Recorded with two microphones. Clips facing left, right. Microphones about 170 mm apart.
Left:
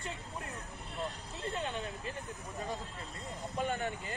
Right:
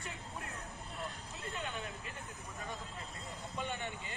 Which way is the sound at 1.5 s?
30° left (ahead or behind).